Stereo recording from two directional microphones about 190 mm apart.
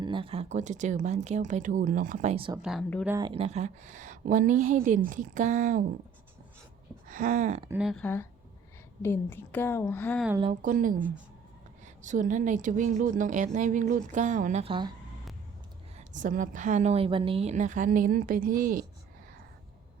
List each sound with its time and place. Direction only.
0.0 s a woman's voice: 25° right (ahead or behind); by 2.3 s 45° right (ahead or behind)
2.3 s speech: 25° right (ahead or behind)
2.6 s speech: centre (ahead or behind)
3.1 s speech: 20° right (ahead or behind)
3.3 s a woman's voice: 35° right (ahead or behind)
7.1 s a woman's voice: 45° right (ahead or behind)
7.7 s a woman's voice: 5° right (ahead or behind)
10.6 s a woman's voice: 45° right (ahead or behind)
12.0 s a woman's voice: 40° right (ahead or behind); by 14.9 s 25° right (ahead or behind)
16.0 s a woman's voice: 40° right (ahead or behind)